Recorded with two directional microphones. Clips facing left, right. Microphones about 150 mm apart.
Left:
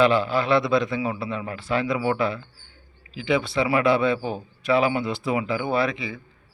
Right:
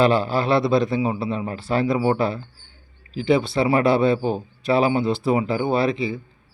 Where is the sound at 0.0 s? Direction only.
35° right (ahead or behind).